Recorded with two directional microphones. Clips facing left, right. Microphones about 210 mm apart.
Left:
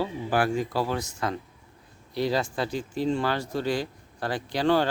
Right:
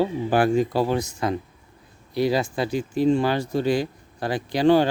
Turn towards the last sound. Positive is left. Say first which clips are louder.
# right 5 dB
turn(degrees=-15)  # may be behind; listen again after turning